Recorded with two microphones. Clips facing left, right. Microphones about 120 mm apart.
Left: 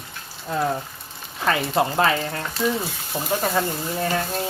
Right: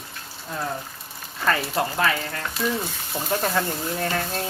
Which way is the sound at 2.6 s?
5° left (ahead or behind).